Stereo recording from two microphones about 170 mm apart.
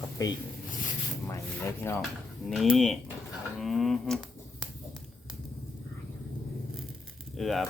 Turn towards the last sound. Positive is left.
turn(degrees=0)  # may be behind; listen again after turning